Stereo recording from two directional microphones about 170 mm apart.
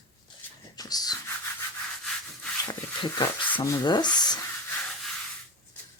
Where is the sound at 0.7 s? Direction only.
20° left (ahead or behind).